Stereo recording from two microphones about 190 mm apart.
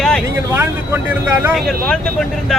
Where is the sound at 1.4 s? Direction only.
Centre (ahead or behind).